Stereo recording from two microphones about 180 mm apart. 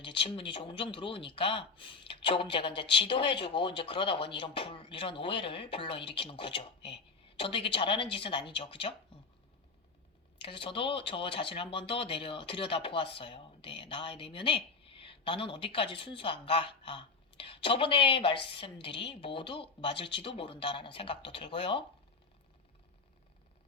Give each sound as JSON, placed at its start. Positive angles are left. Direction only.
{"t": 0.0, "sound": "speech", "side_deg": 30}
{"t": 10.4, "sound": "speech", "side_deg": 30}